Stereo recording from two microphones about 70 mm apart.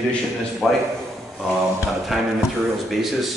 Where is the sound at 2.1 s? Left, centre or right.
Centre.